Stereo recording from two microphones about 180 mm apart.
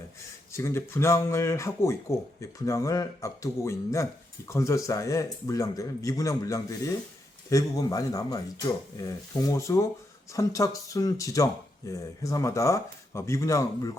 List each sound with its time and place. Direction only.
0.5 s speech: 15° left (ahead or behind)